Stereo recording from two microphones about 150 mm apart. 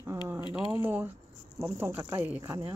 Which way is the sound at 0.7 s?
10° right (ahead or behind).